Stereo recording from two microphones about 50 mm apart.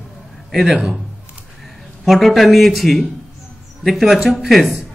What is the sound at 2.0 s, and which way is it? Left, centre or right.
A man's voice, centre.